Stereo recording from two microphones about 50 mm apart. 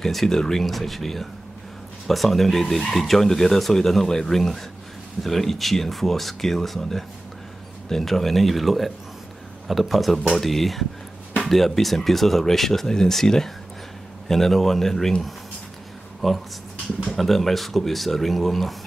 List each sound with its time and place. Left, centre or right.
0.0 s speech: centre